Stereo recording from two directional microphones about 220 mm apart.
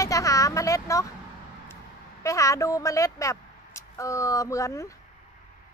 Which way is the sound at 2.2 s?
15° left (ahead or behind).